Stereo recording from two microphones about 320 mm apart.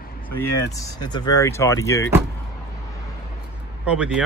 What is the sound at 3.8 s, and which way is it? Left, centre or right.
Speech, centre.